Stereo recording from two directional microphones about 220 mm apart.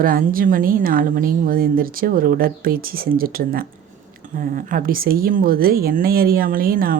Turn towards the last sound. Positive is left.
turn(degrees=-40)  # may be behind; listen again after turning